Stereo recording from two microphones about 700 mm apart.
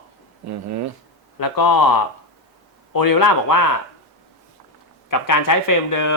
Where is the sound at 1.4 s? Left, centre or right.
Left.